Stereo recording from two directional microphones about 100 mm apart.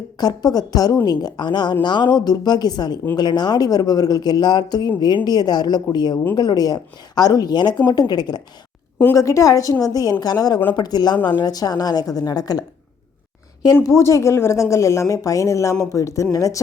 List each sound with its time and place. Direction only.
0.2 s a woman's voice: 40° left (ahead or behind)
9.1 s a woman's voice: 35° left (ahead or behind)
13.8 s a woman's voice: 30° left (ahead or behind)